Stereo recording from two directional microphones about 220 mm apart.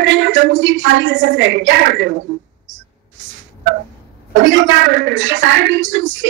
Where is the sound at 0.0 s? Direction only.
55° right (ahead or behind).